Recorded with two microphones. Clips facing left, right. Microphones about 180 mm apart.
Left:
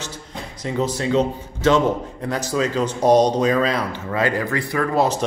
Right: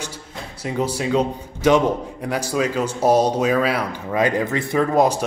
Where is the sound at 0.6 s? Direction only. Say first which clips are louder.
Even; 10° right (ahead or behind).